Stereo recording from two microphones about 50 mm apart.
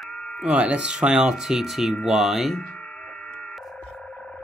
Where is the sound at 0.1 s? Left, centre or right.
Centre.